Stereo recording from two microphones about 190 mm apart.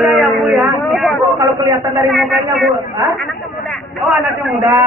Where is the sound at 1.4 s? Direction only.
15° right (ahead or behind).